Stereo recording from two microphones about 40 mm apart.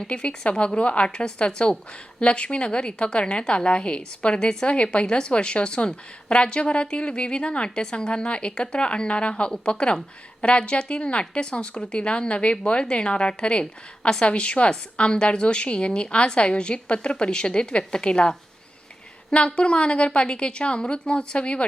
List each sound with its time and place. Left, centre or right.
0.0 s a woman's voice: left